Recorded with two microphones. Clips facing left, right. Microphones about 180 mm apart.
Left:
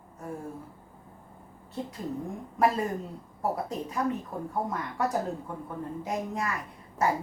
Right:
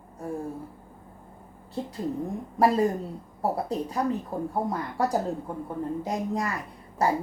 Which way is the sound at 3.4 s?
35° right (ahead or behind).